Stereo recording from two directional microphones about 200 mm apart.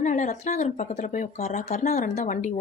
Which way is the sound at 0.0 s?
40° left (ahead or behind).